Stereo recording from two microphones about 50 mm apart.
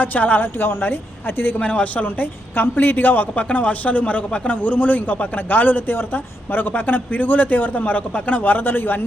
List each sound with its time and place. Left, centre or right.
0.0 s a man's voice: left
1.5 s a man's voice: left